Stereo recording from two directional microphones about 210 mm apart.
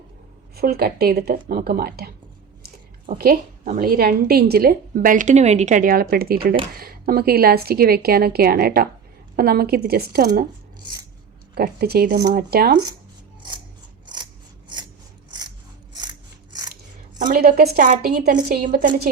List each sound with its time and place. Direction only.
0.5 s a woman's voice: 45° right (ahead or behind)
3.2 s a woman's voice: 45° right (ahead or behind)
11.5 s a woman's voice: 50° right (ahead or behind)
14.7 s a sound: 20° right (ahead or behind)
15.3 s scissors: 20° right (ahead or behind)
17.2 s a woman's voice: 40° right (ahead or behind)